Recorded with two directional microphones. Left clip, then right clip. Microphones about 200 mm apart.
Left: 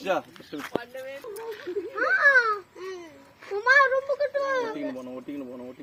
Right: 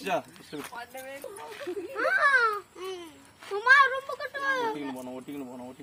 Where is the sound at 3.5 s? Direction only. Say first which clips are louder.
Left 1 dB; 15° right (ahead or behind).